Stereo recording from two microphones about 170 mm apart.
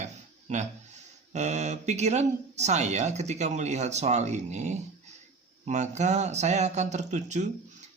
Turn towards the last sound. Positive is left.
turn(degrees=-45)  # may be behind; listen again after turning